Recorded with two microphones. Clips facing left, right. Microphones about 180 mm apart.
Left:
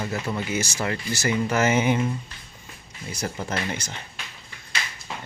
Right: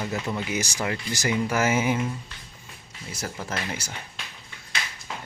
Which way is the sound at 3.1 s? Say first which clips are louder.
Left 3 dB; centre (ahead or behind).